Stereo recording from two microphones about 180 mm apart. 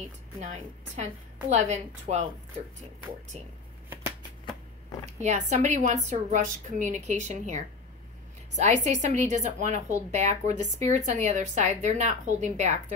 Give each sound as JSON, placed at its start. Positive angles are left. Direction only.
{"t": 0.4, "sound": "a woman's voice", "side_deg": -40}
{"t": 5.0, "sound": "a woman's voice", "side_deg": -40}